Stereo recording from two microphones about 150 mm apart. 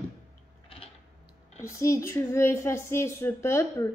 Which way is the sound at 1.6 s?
20° left (ahead or behind).